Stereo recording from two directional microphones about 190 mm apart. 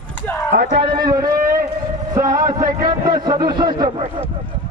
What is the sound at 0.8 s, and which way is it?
A man's voice, 20° right (ahead or behind).